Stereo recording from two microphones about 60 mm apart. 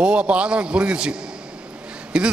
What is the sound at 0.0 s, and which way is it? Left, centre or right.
A man's voice, centre.